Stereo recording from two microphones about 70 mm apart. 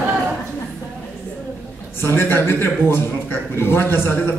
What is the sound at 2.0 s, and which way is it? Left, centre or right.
A man's voice, left.